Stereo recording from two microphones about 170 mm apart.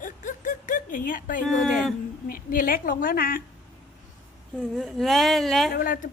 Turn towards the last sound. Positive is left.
turn(degrees=55)  # may be behind; listen again after turning